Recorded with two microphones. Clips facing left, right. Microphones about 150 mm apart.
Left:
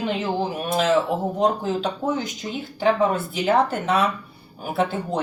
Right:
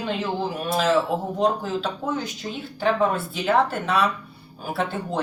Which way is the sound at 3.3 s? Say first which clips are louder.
Left 1 dB; 20° left (ahead or behind).